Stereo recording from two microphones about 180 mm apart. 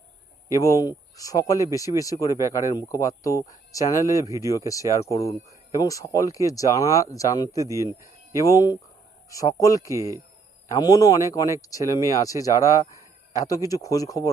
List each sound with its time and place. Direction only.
0.6 s speech: 20° left (ahead or behind)
7.6 s speech: 20° right (ahead or behind)
8.4 s speech: 20° left (ahead or behind)
9.9 s speech: 15° right (ahead or behind)
10.7 s speech: 20° left (ahead or behind)